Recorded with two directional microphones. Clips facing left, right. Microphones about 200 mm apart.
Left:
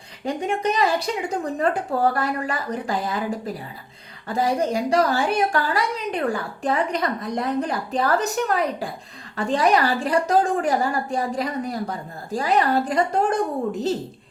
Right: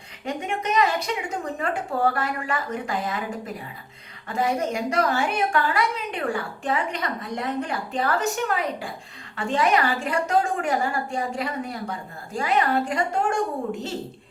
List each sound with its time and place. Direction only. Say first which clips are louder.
0.3 s a woman's voice: left 4 dB; 35° left (ahead or behind)